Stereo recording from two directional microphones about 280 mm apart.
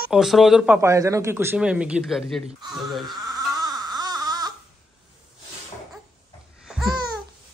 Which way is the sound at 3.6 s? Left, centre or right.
Centre.